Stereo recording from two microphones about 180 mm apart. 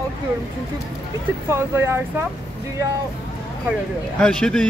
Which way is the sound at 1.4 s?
15° right (ahead or behind).